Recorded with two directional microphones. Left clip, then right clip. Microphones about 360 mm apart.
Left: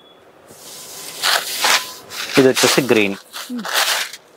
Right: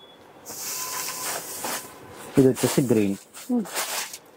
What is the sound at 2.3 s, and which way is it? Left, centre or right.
Speech, centre.